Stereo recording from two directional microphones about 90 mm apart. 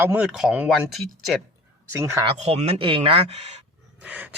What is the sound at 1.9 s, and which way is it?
Speech, 30° right (ahead or behind).